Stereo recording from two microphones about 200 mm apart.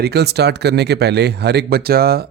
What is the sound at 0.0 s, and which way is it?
Speech, 55° right (ahead or behind).